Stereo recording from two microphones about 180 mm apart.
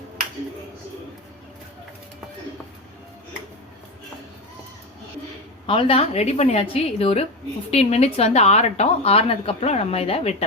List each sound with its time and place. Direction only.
5.6 s a woman's voice: 30° left (ahead or behind)